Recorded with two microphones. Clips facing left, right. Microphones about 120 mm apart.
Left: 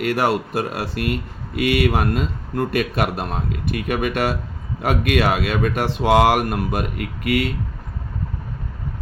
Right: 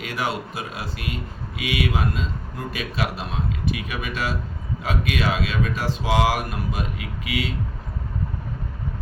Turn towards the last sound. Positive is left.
turn(degrees=55)  # may be behind; listen again after turning